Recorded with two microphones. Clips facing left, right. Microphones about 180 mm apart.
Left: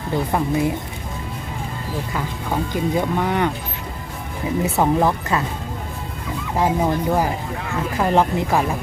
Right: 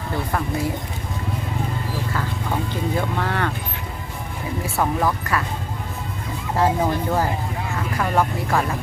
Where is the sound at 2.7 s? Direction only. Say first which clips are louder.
Left 5 dB; 15° left (ahead or behind).